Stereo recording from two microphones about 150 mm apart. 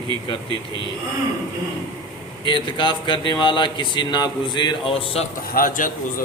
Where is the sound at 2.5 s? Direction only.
30° left (ahead or behind).